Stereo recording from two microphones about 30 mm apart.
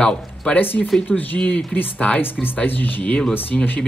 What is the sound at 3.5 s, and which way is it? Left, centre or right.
Speech, left.